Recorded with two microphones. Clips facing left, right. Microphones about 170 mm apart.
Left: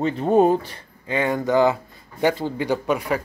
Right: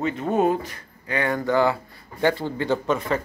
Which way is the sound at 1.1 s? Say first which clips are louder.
Left 2 dB; 20° left (ahead or behind).